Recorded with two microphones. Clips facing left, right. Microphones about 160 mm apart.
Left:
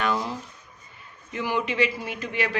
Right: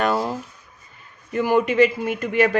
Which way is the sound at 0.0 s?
45° right (ahead or behind).